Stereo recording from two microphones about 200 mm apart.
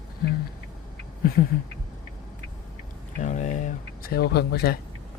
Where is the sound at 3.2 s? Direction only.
40° left (ahead or behind).